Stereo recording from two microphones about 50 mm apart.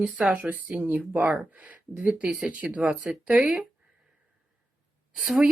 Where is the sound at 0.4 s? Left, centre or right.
Right.